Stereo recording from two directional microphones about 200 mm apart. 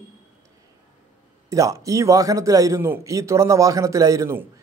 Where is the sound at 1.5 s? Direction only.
15° right (ahead or behind).